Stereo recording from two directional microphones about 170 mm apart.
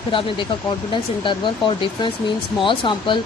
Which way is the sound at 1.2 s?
30° left (ahead or behind).